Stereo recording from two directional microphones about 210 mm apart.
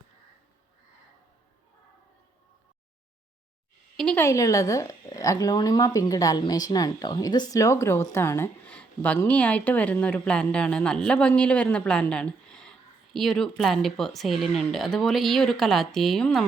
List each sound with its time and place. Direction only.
3.9 s a woman's voice: 5° left (ahead or behind)